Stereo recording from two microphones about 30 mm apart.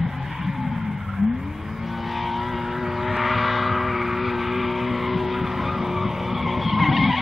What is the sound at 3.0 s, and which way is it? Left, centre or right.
Vehicle, centre.